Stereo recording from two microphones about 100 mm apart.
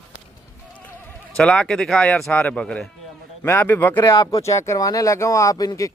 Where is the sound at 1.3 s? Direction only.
10° left (ahead or behind).